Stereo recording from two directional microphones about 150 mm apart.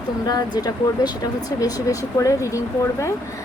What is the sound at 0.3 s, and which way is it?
Speech, 25° left (ahead or behind).